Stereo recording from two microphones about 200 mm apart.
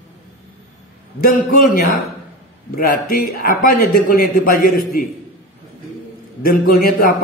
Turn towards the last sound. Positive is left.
turn(degrees=45)  # may be behind; listen again after turning